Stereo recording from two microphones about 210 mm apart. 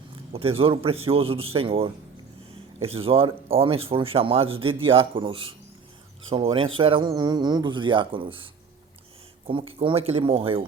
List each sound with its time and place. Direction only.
0.3 s speech: 25° right (ahead or behind)
9.5 s speech: 25° right (ahead or behind)